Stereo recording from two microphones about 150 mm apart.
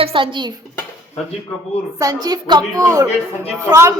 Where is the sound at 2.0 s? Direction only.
25° right (ahead or behind).